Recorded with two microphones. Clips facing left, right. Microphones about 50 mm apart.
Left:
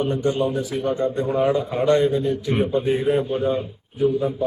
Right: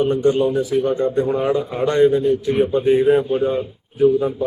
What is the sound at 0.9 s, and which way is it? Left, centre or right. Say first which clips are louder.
Speech: right 4 dB; right.